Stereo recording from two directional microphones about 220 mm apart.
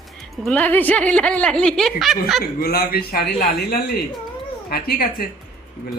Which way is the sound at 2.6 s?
45° left (ahead or behind).